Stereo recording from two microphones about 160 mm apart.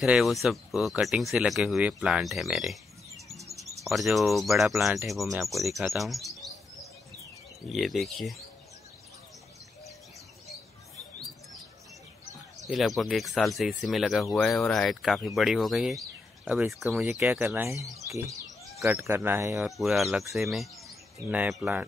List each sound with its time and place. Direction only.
0.0 s speech: centre (ahead or behind)
3.3 s music: centre (ahead or behind)
3.8 s speech: centre (ahead or behind)
7.7 s speech: centre (ahead or behind)
12.6 s speech: centre (ahead or behind)
17.7 s speech: 20° right (ahead or behind)
19.6 s speech: centre (ahead or behind)